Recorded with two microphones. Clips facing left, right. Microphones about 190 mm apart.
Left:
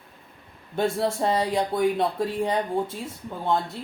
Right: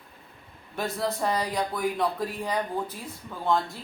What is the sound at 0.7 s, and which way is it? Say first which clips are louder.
Speech: left 5 dB; 25° left (ahead or behind).